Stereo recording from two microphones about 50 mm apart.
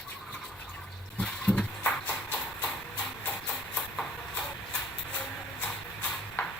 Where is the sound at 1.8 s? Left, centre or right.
Left.